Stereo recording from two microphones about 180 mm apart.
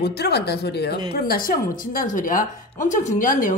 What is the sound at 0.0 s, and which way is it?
Speech, 65° left (ahead or behind).